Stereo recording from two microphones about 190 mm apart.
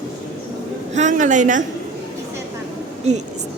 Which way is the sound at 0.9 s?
40° right (ahead or behind).